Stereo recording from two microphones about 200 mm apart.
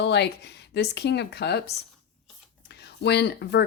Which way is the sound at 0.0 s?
60° left (ahead or behind).